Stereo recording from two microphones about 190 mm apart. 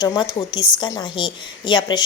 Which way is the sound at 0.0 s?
20° left (ahead or behind).